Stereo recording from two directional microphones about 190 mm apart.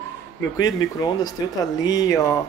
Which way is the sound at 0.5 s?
20° left (ahead or behind).